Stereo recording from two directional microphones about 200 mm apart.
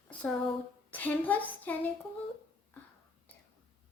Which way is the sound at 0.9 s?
10° left (ahead or behind).